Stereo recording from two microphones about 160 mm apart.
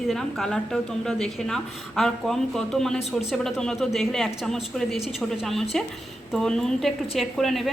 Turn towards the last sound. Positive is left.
turn(degrees=0)  # may be behind; listen again after turning